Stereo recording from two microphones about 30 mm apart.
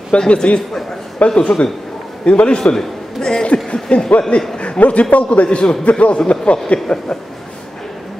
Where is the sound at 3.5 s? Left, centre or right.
Left.